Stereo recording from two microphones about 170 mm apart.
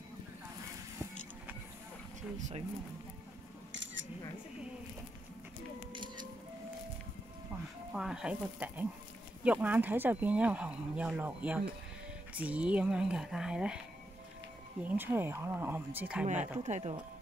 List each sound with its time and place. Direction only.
2.3 s speech: 45° right (ahead or behind)
3.7 s camera: 90° right
7.9 s speech: 5° right (ahead or behind)
14.8 s speech: 10° right (ahead or behind)
16.5 s speech: 45° right (ahead or behind)